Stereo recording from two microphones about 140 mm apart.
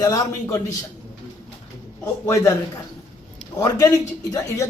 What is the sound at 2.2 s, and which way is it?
A man's voice, 20° left (ahead or behind).